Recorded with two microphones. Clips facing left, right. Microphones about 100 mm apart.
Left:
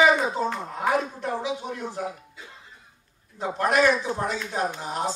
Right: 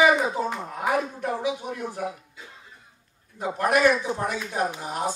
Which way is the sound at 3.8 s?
15° right (ahead or behind).